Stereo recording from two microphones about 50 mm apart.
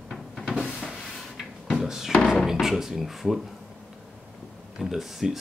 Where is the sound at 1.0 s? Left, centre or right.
Centre.